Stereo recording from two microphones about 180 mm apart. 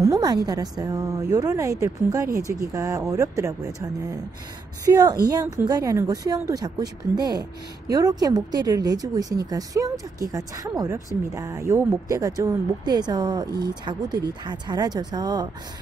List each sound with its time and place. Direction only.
0.0 s speech: 20° right (ahead or behind)